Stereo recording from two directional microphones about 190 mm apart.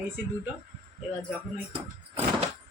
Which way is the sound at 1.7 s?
30° right (ahead or behind).